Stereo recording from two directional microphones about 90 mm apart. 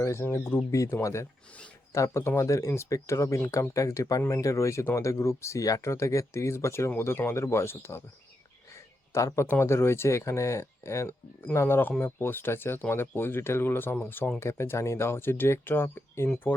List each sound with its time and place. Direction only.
0.0 s speech: 30° left (ahead or behind)
8.7 s a sound: 35° left (ahead or behind)
9.5 s speech: 30° left (ahead or behind)